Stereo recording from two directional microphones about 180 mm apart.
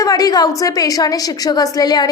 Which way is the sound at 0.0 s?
20° left (ahead or behind).